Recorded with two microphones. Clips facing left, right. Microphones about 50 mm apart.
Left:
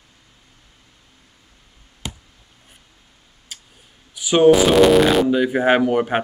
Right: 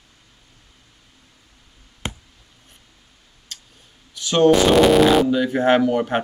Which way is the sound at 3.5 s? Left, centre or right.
Centre.